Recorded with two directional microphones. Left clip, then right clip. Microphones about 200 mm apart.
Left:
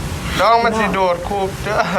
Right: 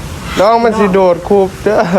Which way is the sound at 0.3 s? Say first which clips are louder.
Right 5 dB; 35° right (ahead or behind).